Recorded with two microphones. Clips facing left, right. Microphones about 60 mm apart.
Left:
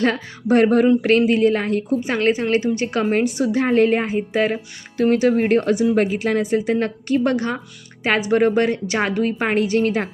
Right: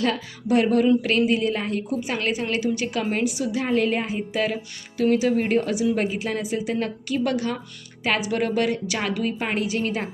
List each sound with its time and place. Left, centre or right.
0.0 s a woman's voice: left